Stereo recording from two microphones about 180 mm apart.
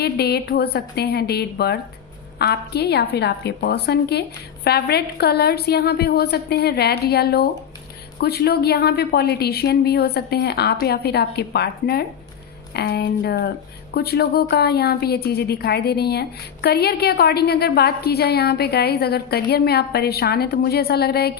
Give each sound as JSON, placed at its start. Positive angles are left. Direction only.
{"t": 0.0, "sound": "a woman's voice", "side_deg": 65}